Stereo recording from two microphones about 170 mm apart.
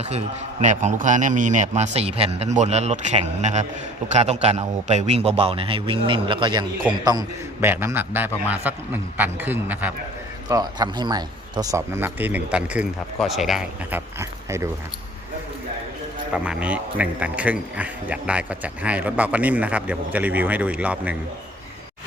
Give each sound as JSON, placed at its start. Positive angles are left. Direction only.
{"t": 0.0, "sound": "a man's voice", "side_deg": -40}
{"t": 7.6, "sound": "a man's voice", "side_deg": -10}
{"t": 10.5, "sound": "a man's voice", "side_deg": -25}
{"t": 14.2, "sound": "speech", "side_deg": -15}
{"t": 16.3, "sound": "a man's voice", "side_deg": -5}